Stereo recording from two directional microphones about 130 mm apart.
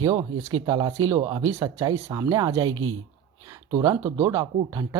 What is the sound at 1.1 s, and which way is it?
Speech, 45° right (ahead or behind).